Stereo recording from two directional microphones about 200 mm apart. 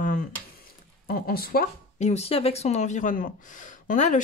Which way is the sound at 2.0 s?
35° left (ahead or behind).